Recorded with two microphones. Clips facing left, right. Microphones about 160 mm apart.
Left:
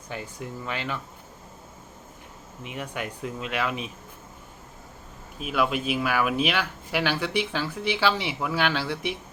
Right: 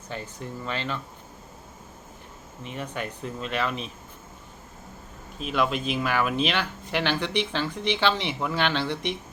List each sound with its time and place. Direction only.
0.1 s speech: 10° left (ahead or behind)
2.6 s speech: 10° left (ahead or behind)
5.4 s speech: 5° left (ahead or behind)